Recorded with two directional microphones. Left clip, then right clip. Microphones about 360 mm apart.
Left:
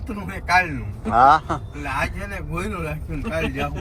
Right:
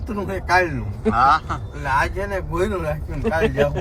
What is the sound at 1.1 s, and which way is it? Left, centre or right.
Speech, centre.